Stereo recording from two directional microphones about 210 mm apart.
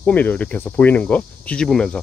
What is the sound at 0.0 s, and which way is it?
Speech, 10° left (ahead or behind).